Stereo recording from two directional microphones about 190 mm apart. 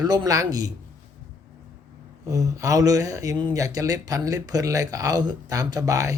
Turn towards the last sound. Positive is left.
turn(degrees=-15)  # may be behind; listen again after turning